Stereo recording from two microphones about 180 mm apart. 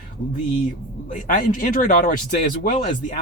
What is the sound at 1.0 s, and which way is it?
Speech, 45° left (ahead or behind).